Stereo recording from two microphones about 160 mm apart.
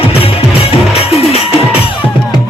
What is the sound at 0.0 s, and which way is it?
Music, 35° left (ahead or behind).